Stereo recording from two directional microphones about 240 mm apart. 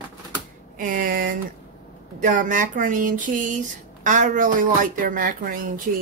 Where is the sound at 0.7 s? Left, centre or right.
Right.